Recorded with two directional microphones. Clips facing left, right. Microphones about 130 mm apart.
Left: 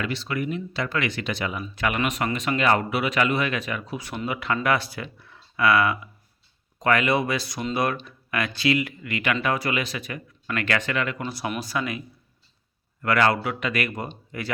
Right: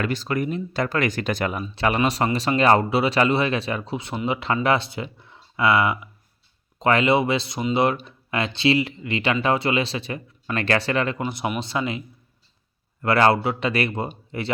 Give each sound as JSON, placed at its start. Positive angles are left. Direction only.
{"t": 0.0, "sound": "speech", "side_deg": -45}
{"t": 1.6, "sound": "speech", "side_deg": -30}
{"t": 11.3, "sound": "speech", "side_deg": -20}